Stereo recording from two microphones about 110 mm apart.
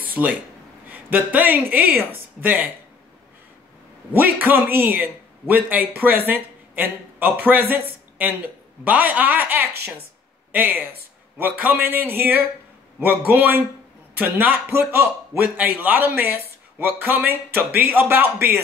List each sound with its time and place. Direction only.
0.0 s a sound: 15° right (ahead or behind)
0.8 s speech: 15° right (ahead or behind)
4.1 s a man's voice: 15° right (ahead or behind)